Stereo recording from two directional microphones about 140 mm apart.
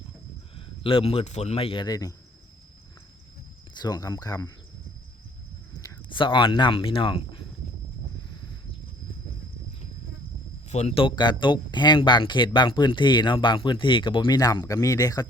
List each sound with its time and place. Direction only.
0.5 s speech: 40° left (ahead or behind)
3.8 s speech: 30° left (ahead or behind)
6.1 s speech: 35° left (ahead or behind)
10.7 s speech: 50° left (ahead or behind); by 15.3 s 25° left (ahead or behind)